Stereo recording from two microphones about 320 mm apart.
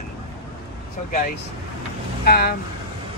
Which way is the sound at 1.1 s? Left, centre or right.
Left.